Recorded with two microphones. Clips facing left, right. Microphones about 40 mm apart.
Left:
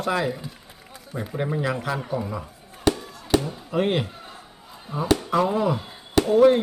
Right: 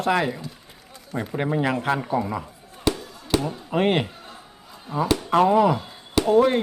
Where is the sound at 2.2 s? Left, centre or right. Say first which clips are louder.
Right 4 dB; right.